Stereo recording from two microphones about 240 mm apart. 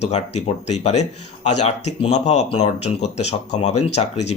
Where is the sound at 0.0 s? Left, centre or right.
Left.